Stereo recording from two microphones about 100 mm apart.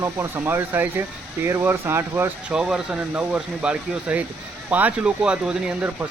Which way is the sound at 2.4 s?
10° right (ahead or behind).